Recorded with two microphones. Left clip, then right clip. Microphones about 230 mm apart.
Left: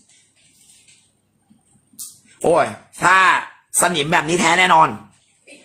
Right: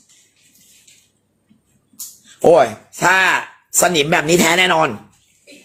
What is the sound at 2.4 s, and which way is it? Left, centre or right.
Speech, centre.